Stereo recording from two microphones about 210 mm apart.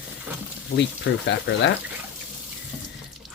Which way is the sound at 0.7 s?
60° left (ahead or behind).